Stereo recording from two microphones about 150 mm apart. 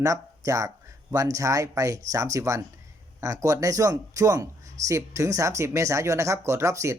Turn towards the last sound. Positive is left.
turn(degrees=-20)  # may be behind; listen again after turning